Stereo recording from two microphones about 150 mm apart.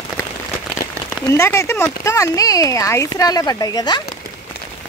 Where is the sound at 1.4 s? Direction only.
15° left (ahead or behind).